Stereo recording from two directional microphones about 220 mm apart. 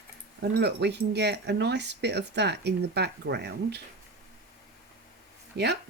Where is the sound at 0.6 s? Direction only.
50° right (ahead or behind).